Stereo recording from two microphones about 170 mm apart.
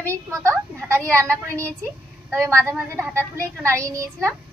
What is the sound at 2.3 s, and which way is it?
Speech, 15° right (ahead or behind).